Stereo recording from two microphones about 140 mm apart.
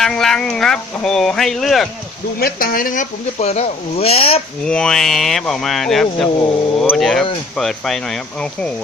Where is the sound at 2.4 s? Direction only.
90° left.